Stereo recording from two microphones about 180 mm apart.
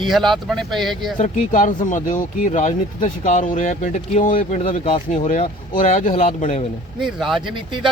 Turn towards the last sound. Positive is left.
turn(degrees=-25)  # may be behind; listen again after turning